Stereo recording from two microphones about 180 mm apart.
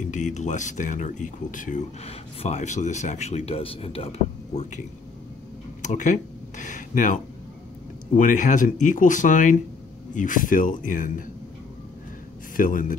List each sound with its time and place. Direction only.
0.0 s speech: 45° left (ahead or behind)
5.8 s speech: 45° left (ahead or behind)
12.5 s speech: 50° left (ahead or behind)